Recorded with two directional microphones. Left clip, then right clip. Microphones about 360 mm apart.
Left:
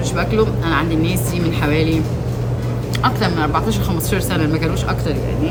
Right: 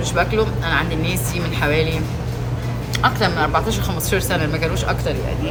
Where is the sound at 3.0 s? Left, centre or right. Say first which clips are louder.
Right 1 dB; centre.